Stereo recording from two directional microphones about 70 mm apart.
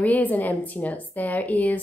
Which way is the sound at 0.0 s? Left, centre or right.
Left.